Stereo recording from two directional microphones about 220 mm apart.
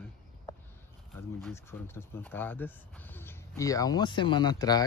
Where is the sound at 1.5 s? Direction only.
10° left (ahead or behind).